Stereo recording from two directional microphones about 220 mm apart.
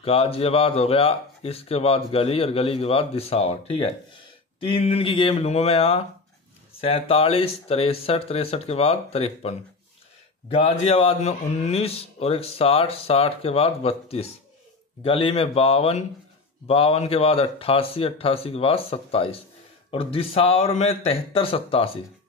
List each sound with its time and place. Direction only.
0.0 s speech: 25° left (ahead or behind)